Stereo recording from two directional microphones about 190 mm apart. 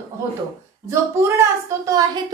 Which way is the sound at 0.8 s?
15° right (ahead or behind).